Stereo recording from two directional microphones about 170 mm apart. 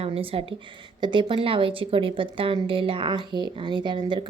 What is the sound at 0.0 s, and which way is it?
A woman's voice, 35° right (ahead or behind).